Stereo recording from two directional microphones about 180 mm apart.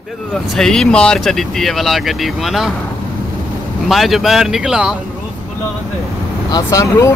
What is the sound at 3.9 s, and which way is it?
Speech, centre (ahead or behind).